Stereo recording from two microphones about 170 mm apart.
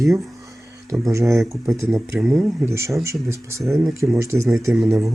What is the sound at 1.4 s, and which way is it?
Speech, centre (ahead or behind).